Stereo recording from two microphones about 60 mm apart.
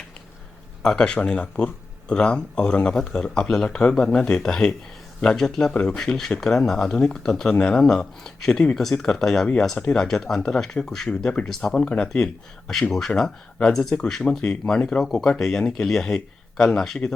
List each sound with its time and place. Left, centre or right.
0.8 s speech: centre